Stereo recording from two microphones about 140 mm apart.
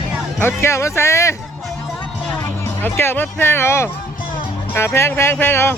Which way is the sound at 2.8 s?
15° left (ahead or behind).